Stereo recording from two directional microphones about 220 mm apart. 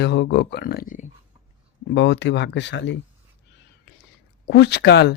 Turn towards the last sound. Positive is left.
turn(degrees=50)  # may be behind; listen again after turning